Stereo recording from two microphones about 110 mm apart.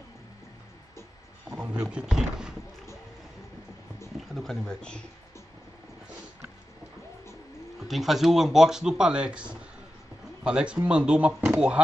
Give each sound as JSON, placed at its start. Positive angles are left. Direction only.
{"t": 1.9, "sound": "speech", "side_deg": -5}
{"t": 4.3, "sound": "speech", "side_deg": 0}
{"t": 7.9, "sound": "speech", "side_deg": 0}